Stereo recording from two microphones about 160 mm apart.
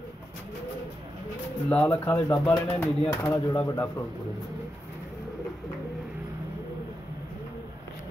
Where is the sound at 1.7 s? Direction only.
10° left (ahead or behind).